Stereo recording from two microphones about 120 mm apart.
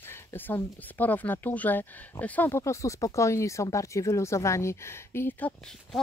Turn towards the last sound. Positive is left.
turn(degrees=15)  # may be behind; listen again after turning